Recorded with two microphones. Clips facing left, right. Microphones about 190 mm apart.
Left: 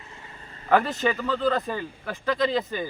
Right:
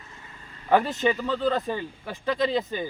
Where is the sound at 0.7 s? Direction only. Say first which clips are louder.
Even; 20° right (ahead or behind).